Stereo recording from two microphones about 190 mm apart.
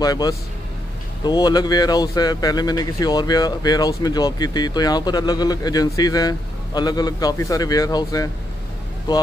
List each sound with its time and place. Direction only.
0.0 s speech: 20° left (ahead or behind)